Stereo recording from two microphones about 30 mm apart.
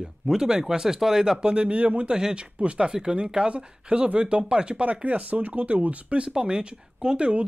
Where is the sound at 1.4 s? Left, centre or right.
Right.